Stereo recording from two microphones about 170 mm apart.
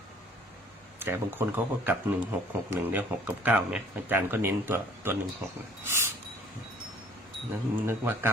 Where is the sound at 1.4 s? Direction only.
15° right (ahead or behind).